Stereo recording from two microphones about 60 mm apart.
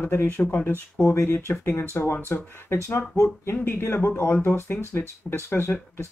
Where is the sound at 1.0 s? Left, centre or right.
Left.